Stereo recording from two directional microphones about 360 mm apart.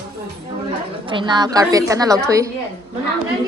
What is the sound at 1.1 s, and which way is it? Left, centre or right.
A woman's voice, centre.